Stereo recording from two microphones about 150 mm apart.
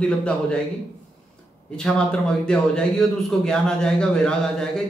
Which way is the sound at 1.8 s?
5° left (ahead or behind).